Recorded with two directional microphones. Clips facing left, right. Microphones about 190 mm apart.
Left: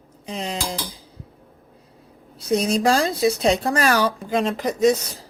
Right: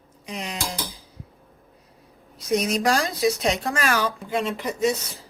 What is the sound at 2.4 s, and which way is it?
Speech, 30° left (ahead or behind).